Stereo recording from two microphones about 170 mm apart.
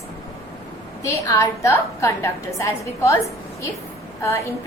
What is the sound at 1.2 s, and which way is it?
A woman's voice, 20° left (ahead or behind).